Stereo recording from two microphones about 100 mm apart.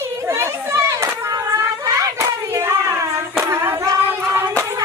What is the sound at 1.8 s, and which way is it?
Hands, 30° right (ahead or behind).